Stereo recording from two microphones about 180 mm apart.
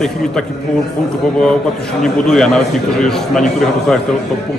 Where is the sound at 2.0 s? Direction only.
5° left (ahead or behind).